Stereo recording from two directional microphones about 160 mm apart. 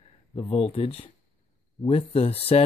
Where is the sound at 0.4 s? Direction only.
35° left (ahead or behind).